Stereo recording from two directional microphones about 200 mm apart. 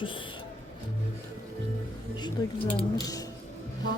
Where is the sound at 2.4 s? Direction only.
20° left (ahead or behind).